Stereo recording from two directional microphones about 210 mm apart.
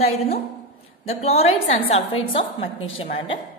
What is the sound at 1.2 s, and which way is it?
A woman's voice, 30° left (ahead or behind).